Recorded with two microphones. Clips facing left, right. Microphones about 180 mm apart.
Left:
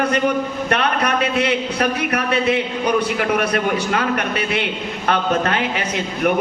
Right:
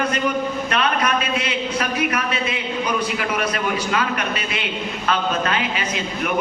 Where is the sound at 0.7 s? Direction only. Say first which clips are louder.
Left 2 dB; 60° left (ahead or behind).